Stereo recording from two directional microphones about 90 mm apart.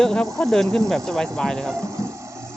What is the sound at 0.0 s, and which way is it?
Speech, 5° left (ahead or behind).